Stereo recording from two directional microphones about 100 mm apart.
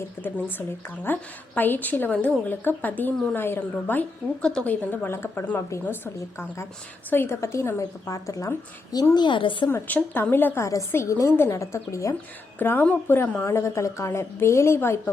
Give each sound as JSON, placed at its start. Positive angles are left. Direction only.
{"t": 0.0, "sound": "a woman's voice", "side_deg": 20}
{"t": 7.1, "sound": "a woman's voice", "side_deg": 25}
{"t": 9.1, "sound": "a woman's voice", "side_deg": 50}
{"t": 9.6, "sound": "a woman's voice", "side_deg": 20}
{"t": 12.5, "sound": "a woman's voice", "side_deg": 20}